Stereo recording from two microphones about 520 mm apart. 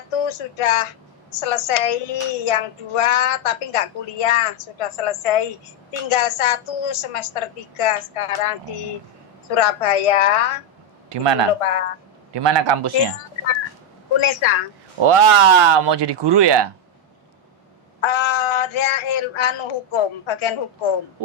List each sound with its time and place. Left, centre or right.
0.1 s a woman's voice: left
11.1 s a man's voice: right
11.6 s a woman's voice: left
12.3 s speech: right
14.2 s a woman's voice: left
15.0 s speech: right
18.0 s a sound: left